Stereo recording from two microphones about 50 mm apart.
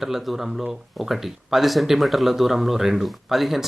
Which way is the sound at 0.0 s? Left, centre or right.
Centre.